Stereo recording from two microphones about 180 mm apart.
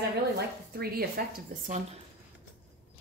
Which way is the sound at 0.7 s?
55° right (ahead or behind).